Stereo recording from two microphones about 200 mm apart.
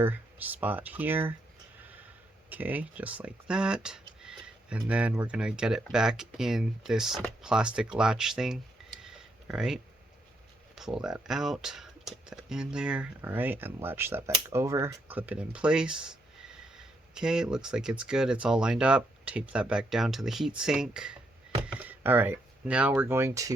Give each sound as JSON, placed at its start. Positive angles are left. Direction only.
{"t": 0.0, "sound": "speech", "side_deg": -10}
{"t": 2.5, "sound": "speech", "side_deg": -10}
{"t": 7.9, "sound": "a sound", "side_deg": -5}
{"t": 10.8, "sound": "speech", "side_deg": 0}